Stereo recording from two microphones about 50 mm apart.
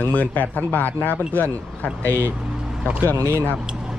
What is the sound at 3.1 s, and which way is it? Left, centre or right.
Speech, right.